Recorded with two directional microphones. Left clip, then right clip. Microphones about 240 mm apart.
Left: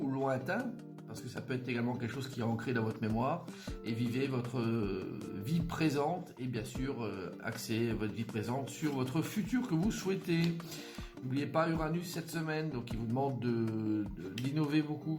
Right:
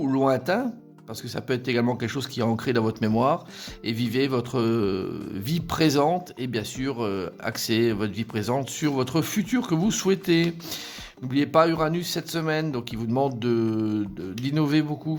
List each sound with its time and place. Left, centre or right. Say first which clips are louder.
0.1 s music: right 13 dB; right
1.4 s speech: right 13 dB; right